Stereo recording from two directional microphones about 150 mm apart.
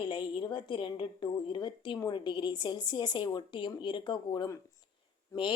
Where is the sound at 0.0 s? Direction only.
35° left (ahead or behind).